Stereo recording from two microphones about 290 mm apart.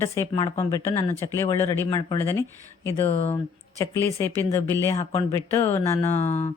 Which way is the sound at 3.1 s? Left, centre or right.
Left.